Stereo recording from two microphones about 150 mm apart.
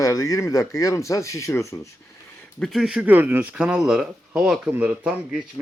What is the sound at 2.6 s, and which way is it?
Speech, centre (ahead or behind).